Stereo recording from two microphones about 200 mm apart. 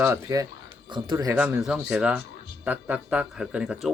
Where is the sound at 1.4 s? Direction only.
5° right (ahead or behind).